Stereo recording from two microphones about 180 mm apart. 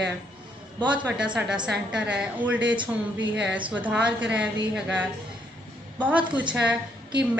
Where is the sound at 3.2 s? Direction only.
75° right (ahead or behind).